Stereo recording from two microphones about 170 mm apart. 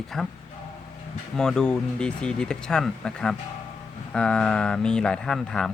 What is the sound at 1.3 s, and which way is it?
A man's voice, 5° left (ahead or behind).